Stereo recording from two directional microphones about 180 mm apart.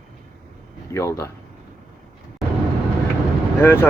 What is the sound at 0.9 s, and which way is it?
Speech, 15° left (ahead or behind).